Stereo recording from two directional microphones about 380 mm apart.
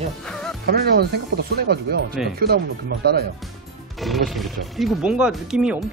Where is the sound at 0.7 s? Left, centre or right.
Right.